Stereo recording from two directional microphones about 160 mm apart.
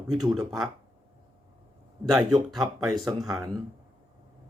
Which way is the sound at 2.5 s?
Centre (ahead or behind).